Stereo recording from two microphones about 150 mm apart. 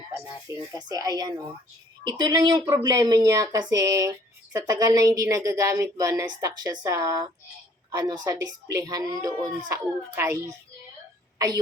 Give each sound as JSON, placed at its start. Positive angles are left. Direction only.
{"t": 0.7, "sound": "a child's voice", "side_deg": -25}